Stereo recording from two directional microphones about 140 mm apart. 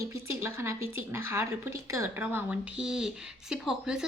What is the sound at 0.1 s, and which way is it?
A woman's voice, 20° right (ahead or behind).